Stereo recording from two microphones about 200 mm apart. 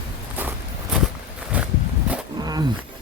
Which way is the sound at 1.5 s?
5° right (ahead or behind).